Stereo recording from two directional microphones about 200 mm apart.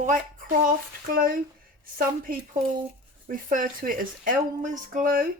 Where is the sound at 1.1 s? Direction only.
45° right (ahead or behind).